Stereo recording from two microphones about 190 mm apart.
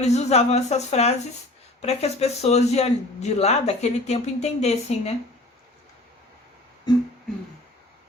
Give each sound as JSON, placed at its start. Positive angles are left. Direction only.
{"t": 0.0, "sound": "a man's voice", "side_deg": 35}